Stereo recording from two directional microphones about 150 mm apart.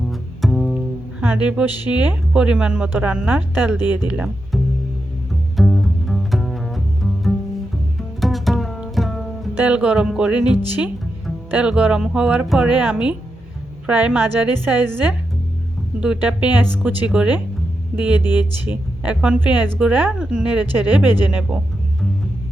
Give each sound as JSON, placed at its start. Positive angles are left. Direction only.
{"t": 0.1, "sound": "double bass", "side_deg": 0}
{"t": 1.2, "sound": "a woman's voice", "side_deg": -10}
{"t": 5.5, "sound": "music", "side_deg": 0}
{"t": 9.6, "sound": "speech", "side_deg": -10}